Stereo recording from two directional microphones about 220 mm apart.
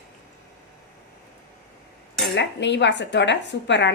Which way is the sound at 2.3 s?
50° left (ahead or behind).